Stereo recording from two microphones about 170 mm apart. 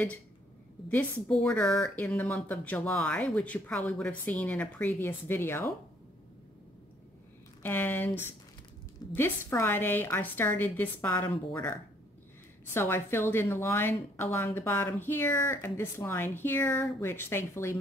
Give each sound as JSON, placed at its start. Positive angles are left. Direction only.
{"t": 0.8, "sound": "speech", "side_deg": 5}
{"t": 7.6, "sound": "speech", "side_deg": 10}
{"t": 9.1, "sound": "speech", "side_deg": 15}